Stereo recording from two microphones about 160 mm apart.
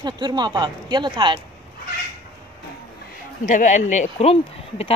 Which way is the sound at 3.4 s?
55° left (ahead or behind).